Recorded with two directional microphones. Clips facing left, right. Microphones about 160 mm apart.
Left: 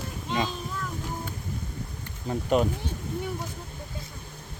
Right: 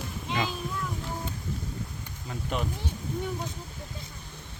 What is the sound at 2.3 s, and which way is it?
Speech, 40° left (ahead or behind).